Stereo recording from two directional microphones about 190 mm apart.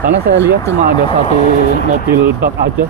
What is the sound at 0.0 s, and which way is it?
Speech, 60° right (ahead or behind).